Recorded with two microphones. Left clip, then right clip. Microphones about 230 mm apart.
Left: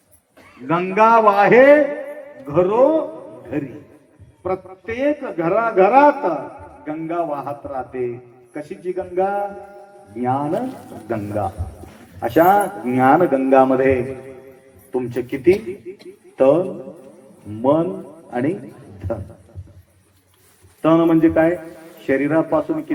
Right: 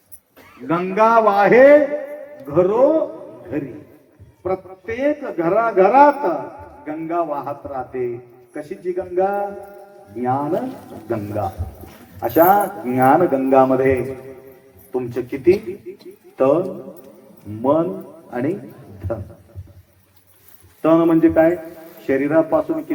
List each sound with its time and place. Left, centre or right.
0.7 s a man's voice: left
4.4 s a man's voice: left
20.8 s a man's voice: left